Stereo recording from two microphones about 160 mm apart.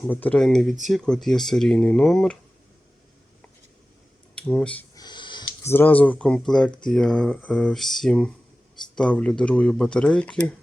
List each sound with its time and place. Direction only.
0.1 s speech: 10° left (ahead or behind)
4.4 s speech: 5° left (ahead or behind)
4.9 s a sound: 30° left (ahead or behind)
5.6 s speech: 10° left (ahead or behind)